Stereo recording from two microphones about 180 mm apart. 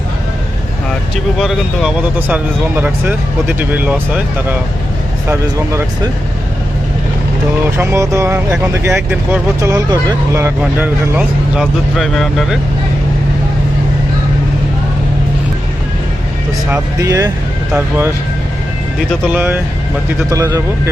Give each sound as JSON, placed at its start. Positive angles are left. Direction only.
{"t": 1.1, "sound": "speech", "side_deg": 0}
{"t": 7.8, "sound": "speech", "side_deg": -15}
{"t": 16.6, "sound": "speech", "side_deg": -15}
{"t": 19.3, "sound": "speech", "side_deg": -10}